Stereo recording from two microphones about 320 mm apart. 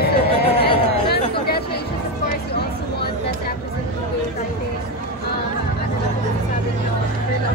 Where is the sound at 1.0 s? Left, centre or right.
Left.